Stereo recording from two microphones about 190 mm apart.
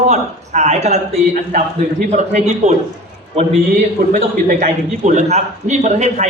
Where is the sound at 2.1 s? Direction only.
35° right (ahead or behind).